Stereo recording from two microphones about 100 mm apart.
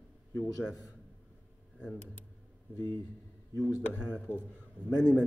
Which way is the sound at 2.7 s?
35° left (ahead or behind).